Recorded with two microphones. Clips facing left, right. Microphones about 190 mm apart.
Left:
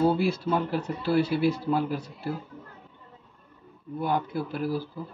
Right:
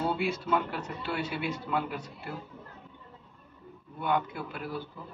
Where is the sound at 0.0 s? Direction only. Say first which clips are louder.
Left 7 dB; 35° left (ahead or behind).